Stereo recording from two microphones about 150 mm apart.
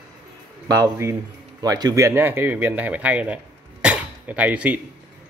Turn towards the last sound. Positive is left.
turn(degrees=-10)  # may be behind; listen again after turning